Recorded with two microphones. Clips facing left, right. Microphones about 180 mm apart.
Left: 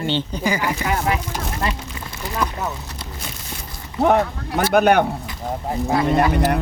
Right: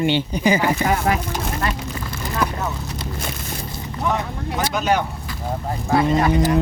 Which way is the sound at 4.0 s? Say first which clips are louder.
Left 7 dB; 60° left (ahead or behind).